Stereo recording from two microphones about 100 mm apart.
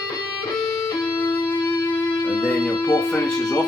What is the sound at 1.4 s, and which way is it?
Music, 20° left (ahead or behind).